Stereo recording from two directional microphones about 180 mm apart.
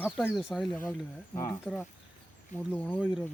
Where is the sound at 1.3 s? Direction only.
15° left (ahead or behind).